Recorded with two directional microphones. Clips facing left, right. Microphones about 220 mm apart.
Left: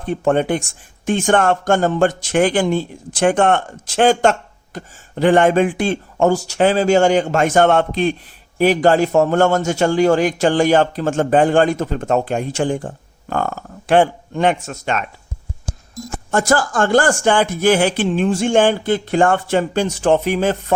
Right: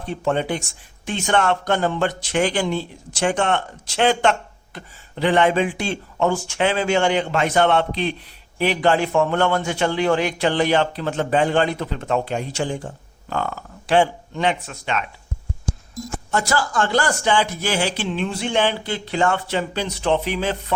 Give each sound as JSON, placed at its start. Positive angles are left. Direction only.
{"t": 0.0, "sound": "speech", "side_deg": 50}
{"t": 16.3, "sound": "speech", "side_deg": 50}